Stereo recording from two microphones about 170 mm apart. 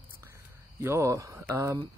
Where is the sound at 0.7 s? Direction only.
15° right (ahead or behind).